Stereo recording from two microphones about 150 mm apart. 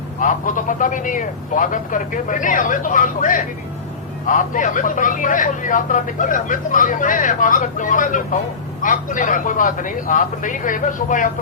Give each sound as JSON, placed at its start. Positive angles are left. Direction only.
{"t": 0.2, "sound": "speech", "side_deg": 60}